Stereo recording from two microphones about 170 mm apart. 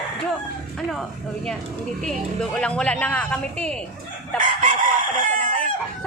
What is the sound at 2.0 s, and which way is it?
Speech, 5° left (ahead or behind).